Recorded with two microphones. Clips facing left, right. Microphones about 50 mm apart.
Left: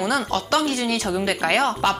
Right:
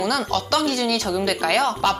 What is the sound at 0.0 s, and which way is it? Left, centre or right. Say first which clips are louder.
Speech: even; left.